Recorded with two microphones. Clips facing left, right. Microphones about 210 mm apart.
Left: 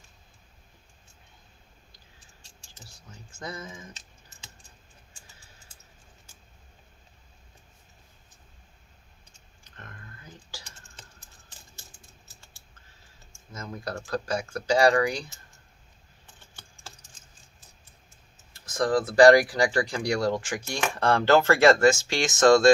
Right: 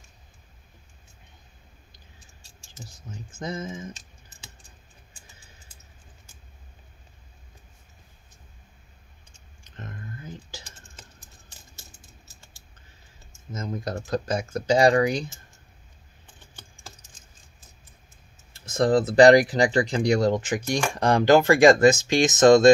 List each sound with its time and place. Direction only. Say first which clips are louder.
3.0 s speech: right 5 dB; 20° right (ahead or behind)
9.7 s a sound: right 8 dB; 20° right (ahead or behind)
13.5 s speech: right 5 dB; 20° right (ahead or behind)
18.7 s speech: right 4 dB; 25° right (ahead or behind)